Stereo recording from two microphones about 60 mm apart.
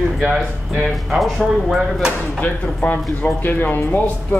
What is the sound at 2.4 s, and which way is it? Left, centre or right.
Speech, left.